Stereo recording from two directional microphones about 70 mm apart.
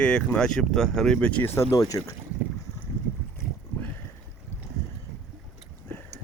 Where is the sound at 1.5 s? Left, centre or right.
Left.